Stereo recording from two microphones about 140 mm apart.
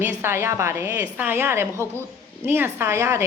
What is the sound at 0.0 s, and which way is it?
A woman's voice, 15° right (ahead or behind).